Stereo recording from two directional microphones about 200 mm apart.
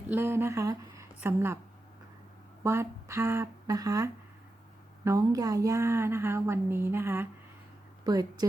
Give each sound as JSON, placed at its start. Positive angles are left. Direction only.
{"t": 0.1, "sound": "speech", "side_deg": -10}
{"t": 2.6, "sound": "a woman's voice", "side_deg": -15}